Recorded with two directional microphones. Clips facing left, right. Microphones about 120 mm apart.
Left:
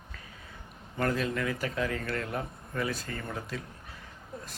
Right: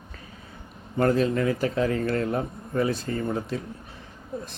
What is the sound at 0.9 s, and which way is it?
A man's voice, 30° right (ahead or behind).